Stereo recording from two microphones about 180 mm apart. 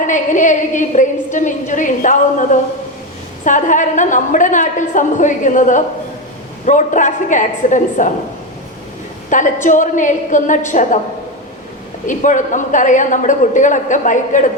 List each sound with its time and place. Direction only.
0.0 s a woman's voice: 45° left (ahead or behind)
9.3 s a woman's voice: 45° left (ahead or behind)
12.0 s a woman's voice: 45° left (ahead or behind)